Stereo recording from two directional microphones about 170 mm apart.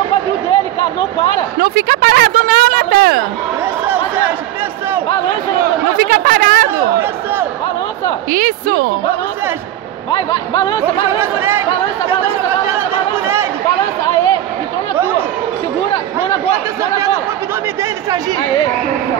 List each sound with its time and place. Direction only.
1.6 s a sound: 60° right (ahead or behind)
6.0 s speech: 55° right (ahead or behind)
8.3 s speech: 55° right (ahead or behind)
10.1 s speech: 25° left (ahead or behind)
10.8 s speech: 15° right (ahead or behind)
15.0 s a sound: 15° right (ahead or behind)